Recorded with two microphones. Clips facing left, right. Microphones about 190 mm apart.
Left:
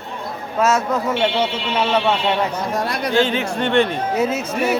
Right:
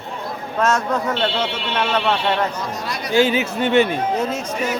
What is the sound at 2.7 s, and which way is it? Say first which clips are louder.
Speech: left 6 dB; 55° left (ahead or behind).